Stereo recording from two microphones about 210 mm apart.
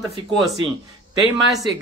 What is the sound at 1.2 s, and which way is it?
Speech, 15° right (ahead or behind).